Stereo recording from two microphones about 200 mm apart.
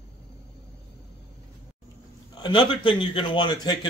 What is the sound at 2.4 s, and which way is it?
A man's voice, 25° left (ahead or behind).